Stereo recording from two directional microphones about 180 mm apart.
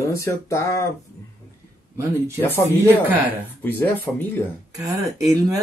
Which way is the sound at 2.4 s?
10° left (ahead or behind).